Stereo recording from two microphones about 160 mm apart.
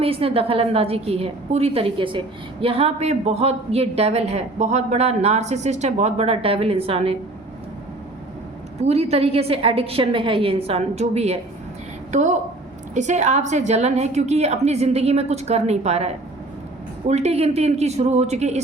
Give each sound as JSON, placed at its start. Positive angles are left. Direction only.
{"t": 0.0, "sound": "a woman's voice", "side_deg": -35}
{"t": 8.8, "sound": "a woman's voice", "side_deg": -40}